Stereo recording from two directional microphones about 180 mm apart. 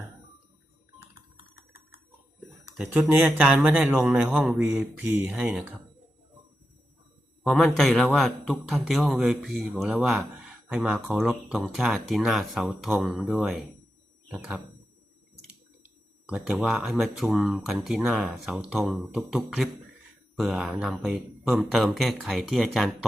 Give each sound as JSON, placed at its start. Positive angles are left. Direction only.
{"t": 2.7, "sound": "speech", "side_deg": -5}
{"t": 7.4, "sound": "a man's voice", "side_deg": 0}
{"t": 16.2, "sound": "a man's voice", "side_deg": -5}